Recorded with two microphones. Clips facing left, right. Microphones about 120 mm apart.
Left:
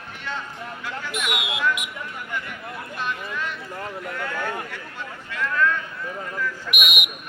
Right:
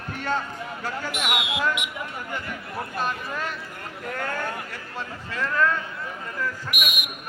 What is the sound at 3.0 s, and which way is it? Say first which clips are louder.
A man's voice: right 1 dB; 40° right (ahead or behind).